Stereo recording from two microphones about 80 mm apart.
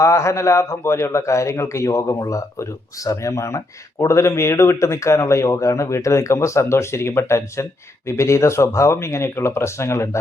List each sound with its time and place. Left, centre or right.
0.0 s a man's voice: left